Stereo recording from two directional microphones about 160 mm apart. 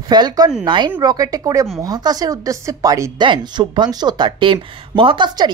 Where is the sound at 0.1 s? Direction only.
25° right (ahead or behind).